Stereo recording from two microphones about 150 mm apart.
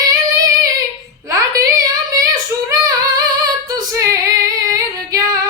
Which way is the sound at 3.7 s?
25° right (ahead or behind).